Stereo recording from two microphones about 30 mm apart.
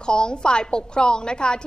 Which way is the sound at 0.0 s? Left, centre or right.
Left.